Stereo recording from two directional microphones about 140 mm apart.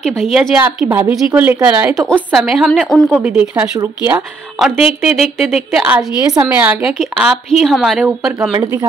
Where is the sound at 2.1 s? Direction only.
5° left (ahead or behind); by 4.2 s 15° right (ahead or behind).